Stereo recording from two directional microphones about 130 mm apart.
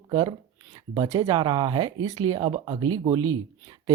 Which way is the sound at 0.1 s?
35° right (ahead or behind).